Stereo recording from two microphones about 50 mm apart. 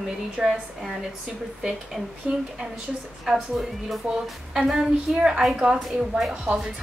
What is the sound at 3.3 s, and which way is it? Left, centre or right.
Speech, centre.